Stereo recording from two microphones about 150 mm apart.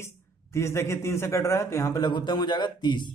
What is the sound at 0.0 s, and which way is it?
Speech, 15° left (ahead or behind).